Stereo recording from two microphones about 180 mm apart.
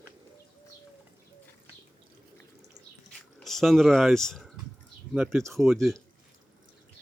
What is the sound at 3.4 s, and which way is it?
Speech, centre (ahead or behind).